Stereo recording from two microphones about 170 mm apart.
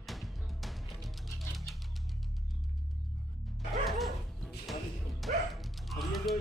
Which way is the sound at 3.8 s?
Centre (ahead or behind).